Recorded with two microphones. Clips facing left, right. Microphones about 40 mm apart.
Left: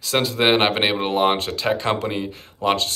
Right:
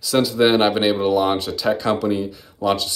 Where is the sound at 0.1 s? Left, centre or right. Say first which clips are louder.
Right 2 dB; left.